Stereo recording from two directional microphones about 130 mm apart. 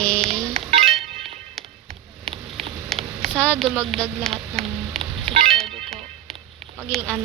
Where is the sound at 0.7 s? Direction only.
50° right (ahead or behind).